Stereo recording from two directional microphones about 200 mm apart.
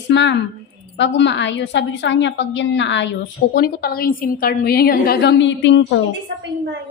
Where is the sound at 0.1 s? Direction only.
60° left (ahead or behind).